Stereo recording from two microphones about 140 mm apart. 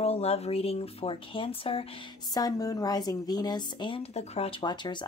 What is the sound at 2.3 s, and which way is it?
A woman's voice, 25° left (ahead or behind).